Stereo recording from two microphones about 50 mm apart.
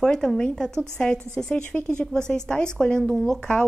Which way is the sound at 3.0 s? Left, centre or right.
Centre.